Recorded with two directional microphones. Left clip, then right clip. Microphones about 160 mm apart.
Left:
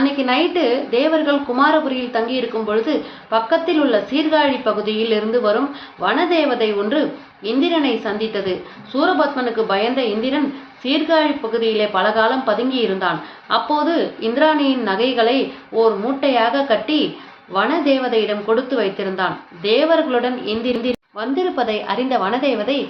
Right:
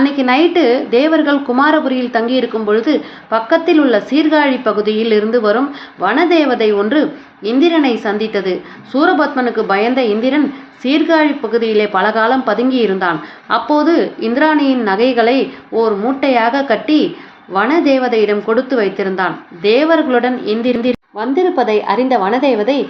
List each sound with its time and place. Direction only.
0.0 s a woman's voice: 45° right (ahead or behind)
21.2 s a woman's voice: 25° right (ahead or behind)